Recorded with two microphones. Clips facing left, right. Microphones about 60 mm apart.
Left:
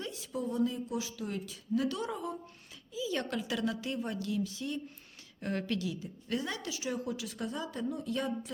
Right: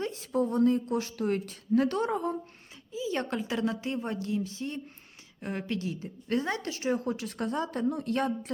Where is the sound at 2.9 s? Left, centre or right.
Right.